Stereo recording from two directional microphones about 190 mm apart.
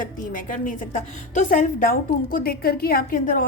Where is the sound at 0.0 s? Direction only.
45° left (ahead or behind).